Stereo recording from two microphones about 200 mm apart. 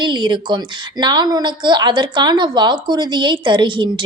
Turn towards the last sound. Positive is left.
turn(degrees=-25)  # may be behind; listen again after turning